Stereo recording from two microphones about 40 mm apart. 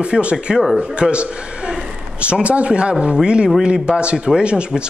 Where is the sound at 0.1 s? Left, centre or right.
Right.